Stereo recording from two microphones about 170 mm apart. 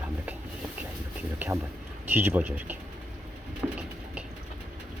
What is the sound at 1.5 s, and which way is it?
Speech, 20° right (ahead or behind).